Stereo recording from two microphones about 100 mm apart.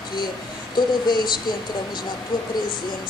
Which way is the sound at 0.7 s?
45° left (ahead or behind).